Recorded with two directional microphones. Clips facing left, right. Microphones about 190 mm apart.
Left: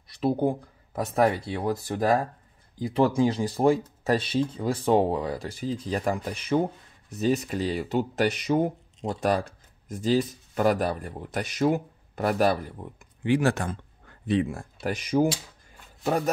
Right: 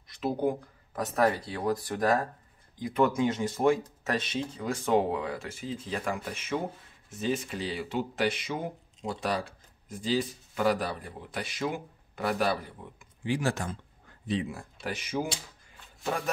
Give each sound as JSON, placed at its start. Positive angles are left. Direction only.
{"t": 0.1, "sound": "speech", "side_deg": 30}
{"t": 13.2, "sound": "a man's voice", "side_deg": 65}